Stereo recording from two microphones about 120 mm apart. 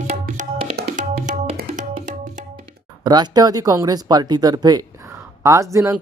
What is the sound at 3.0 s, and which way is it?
Speech, 35° right (ahead or behind).